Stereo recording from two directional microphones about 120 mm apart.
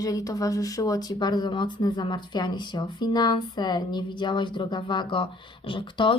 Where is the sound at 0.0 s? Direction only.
30° left (ahead or behind).